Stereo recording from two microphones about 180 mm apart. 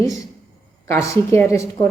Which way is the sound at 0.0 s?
20° left (ahead or behind).